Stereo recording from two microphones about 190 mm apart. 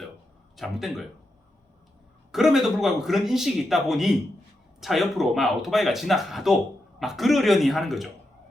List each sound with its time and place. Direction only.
0.5 s speech: centre (ahead or behind)
2.3 s speech: centre (ahead or behind)